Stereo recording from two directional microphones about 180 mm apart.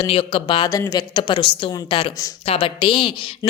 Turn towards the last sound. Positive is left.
turn(degrees=30)  # may be behind; listen again after turning